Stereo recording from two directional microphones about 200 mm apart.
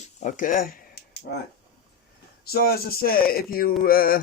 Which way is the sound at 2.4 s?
50° left (ahead or behind).